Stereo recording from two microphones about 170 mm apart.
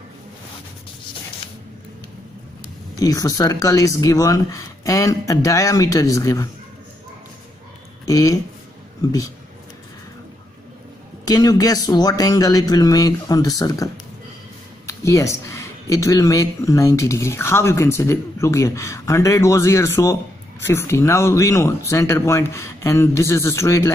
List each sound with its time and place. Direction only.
3.0 s speech: 20° left (ahead or behind)
8.1 s speech: 20° left (ahead or behind)
11.2 s speech: 20° left (ahead or behind)
14.9 s speech: 20° left (ahead or behind)